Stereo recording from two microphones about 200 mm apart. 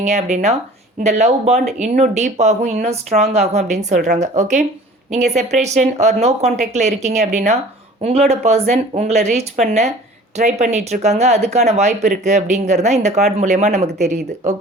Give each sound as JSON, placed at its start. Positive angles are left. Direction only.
{"t": 0.0, "sound": "speech", "side_deg": -35}